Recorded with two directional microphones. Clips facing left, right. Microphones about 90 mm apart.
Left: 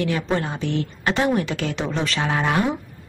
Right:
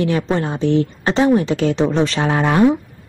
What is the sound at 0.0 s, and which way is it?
Speech, 30° right (ahead or behind).